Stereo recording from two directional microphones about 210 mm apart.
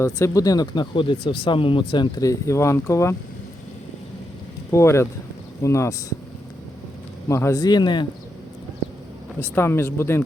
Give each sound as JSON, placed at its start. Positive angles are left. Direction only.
{"t": 0.0, "sound": "speech", "side_deg": 15}
{"t": 4.7, "sound": "speech", "side_deg": 15}
{"t": 7.3, "sound": "speech", "side_deg": 15}
{"t": 9.4, "sound": "speech", "side_deg": 10}